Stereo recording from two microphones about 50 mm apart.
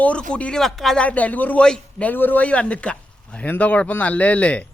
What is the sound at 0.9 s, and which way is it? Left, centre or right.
A man's voice, left.